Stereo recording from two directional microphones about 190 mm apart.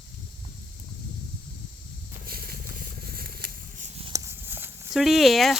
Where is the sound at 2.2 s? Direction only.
50° right (ahead or behind).